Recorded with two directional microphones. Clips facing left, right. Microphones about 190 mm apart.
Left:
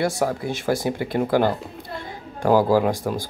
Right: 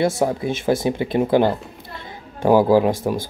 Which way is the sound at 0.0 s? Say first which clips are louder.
Right 3 dB; 20° right (ahead or behind).